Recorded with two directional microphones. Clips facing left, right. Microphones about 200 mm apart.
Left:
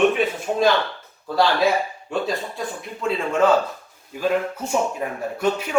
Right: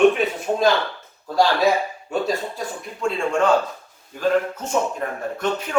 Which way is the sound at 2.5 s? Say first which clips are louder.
Left 1 dB; centre (ahead or behind).